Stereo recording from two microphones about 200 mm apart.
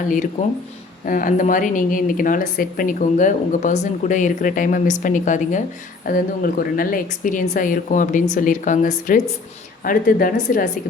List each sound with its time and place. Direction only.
1.0 s a woman's voice: 45° left (ahead or behind)